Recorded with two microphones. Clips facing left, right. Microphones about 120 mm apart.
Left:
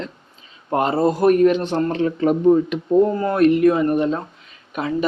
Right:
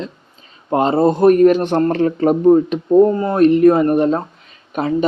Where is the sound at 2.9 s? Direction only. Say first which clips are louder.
Right 5 dB; 25° right (ahead or behind).